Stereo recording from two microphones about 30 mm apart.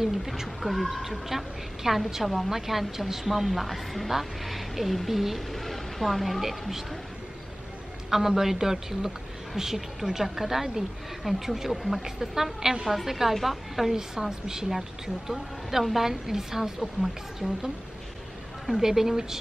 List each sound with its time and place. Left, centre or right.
0.0 s a woman's voice: centre
8.1 s a woman's voice: centre
14.2 s a woman's voice: centre
16.1 s a woman's voice: centre
18.8 s a woman's voice: centre